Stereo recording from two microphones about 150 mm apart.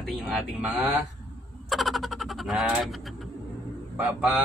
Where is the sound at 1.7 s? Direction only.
Centre (ahead or behind).